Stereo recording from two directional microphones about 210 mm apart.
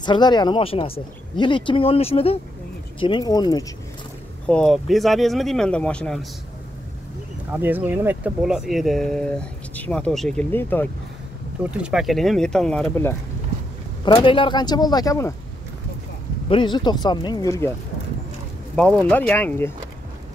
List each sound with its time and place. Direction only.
0.0 s speech: 20° left (ahead or behind)
4.5 s speech: 5° left (ahead or behind)
7.5 s speech: 10° right (ahead or behind); by 10.9 s 10° left (ahead or behind)
11.7 s speech: 5° right (ahead or behind)
14.0 s speech: 25° left (ahead or behind)
16.4 s speech: 20° left (ahead or behind)
18.8 s speech: 5° left (ahead or behind)